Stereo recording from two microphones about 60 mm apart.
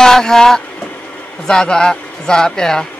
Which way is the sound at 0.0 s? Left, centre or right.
Centre.